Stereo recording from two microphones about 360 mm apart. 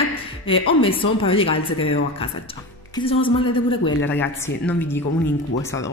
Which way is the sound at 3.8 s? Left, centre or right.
Centre.